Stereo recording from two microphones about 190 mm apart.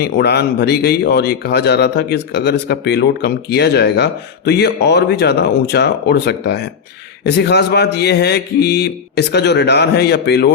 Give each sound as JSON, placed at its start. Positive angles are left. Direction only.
{"t": 0.0, "sound": "speech", "side_deg": 60}